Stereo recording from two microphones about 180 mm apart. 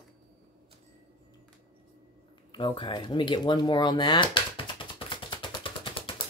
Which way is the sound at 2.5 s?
30° left (ahead or behind).